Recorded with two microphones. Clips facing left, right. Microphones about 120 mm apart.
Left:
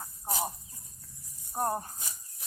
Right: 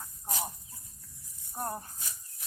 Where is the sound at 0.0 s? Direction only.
35° left (ahead or behind).